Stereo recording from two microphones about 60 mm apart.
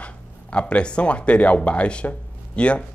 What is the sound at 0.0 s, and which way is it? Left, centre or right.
Speech, left.